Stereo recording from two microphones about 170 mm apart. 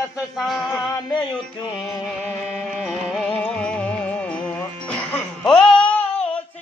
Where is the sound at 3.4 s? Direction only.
5° left (ahead or behind).